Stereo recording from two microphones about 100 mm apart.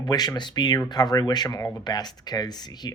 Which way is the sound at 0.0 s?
45° left (ahead or behind).